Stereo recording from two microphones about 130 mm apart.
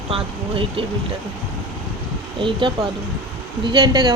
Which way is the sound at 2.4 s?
40° right (ahead or behind).